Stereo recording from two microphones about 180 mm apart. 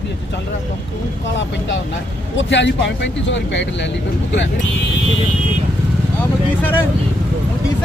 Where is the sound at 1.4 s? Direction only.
85° left.